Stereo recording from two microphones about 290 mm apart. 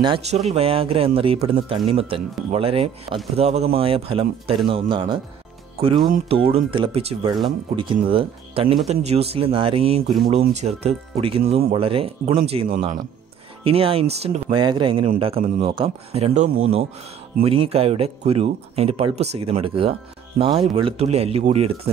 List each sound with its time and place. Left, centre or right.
0.0 s speech: centre